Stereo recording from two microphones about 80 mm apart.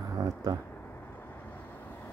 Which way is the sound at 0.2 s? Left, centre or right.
Right.